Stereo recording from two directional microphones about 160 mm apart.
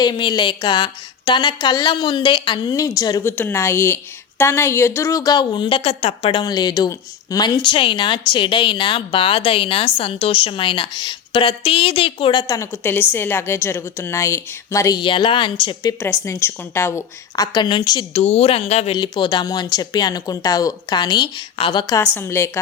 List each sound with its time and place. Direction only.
0.0 s a woman's voice: 30° left (ahead or behind)
6.4 s a woman's voice: 25° left (ahead or behind)
18.1 s speech: 40° left (ahead or behind)
18.9 s a woman's voice: 30° left (ahead or behind)
22.0 s a woman's voice: 15° left (ahead or behind)